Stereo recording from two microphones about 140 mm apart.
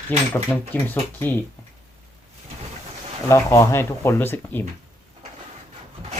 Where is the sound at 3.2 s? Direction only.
20° left (ahead or behind).